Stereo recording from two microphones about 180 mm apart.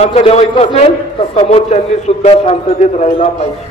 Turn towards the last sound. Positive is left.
turn(degrees=35)  # may be behind; listen again after turning